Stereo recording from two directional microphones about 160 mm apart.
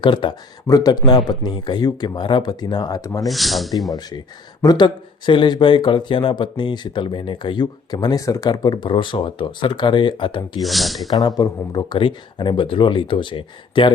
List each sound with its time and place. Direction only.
0.0 s speech: 30° left (ahead or behind)
3.2 s speech: centre (ahead or behind)
4.6 s speech: 25° left (ahead or behind)
10.6 s speech: centre (ahead or behind)
11.1 s speech: 25° left (ahead or behind)